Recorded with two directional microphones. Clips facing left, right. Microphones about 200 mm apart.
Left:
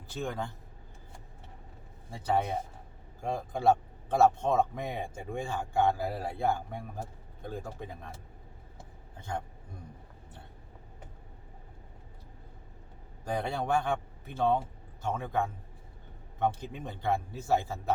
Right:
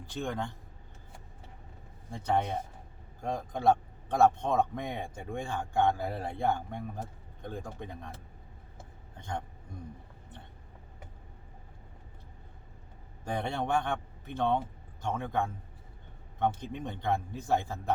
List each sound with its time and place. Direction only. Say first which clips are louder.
0.0 s a man's voice: right 1 dB; 5° left (ahead or behind)
2.0 s a man's voice: even; 5° left (ahead or behind)
9.1 s a man's voice: left 1 dB; 5° left (ahead or behind)
13.2 s a man's voice: left 1 dB; 5° left (ahead or behind)